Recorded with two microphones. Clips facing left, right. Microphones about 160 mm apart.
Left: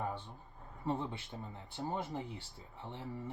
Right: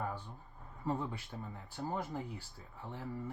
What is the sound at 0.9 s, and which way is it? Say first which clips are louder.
Speech: even; 25° left (ahead or behind).